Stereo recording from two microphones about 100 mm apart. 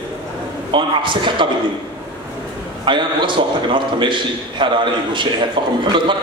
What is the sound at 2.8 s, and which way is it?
A man's voice, 55° right (ahead or behind).